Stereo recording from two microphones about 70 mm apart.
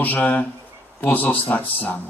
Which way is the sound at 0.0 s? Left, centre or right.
Left.